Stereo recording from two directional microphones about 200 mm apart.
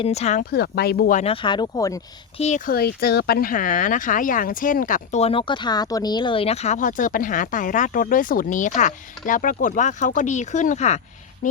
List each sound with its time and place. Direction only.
0.0 s speech: 30° left (ahead or behind)
0.5 s speech: 55° left (ahead or behind)
1.2 s speech: 25° left (ahead or behind)
2.4 s speech: 35° left (ahead or behind)
2.7 s speech: 50° left (ahead or behind); by 11.0 s 35° left (ahead or behind)